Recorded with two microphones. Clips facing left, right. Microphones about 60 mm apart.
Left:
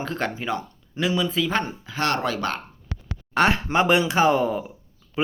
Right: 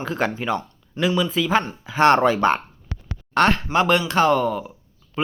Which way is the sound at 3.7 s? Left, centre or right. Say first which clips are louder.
Right 1 dB; centre.